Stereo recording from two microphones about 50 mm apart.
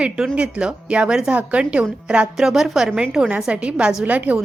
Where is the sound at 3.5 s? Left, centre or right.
Right.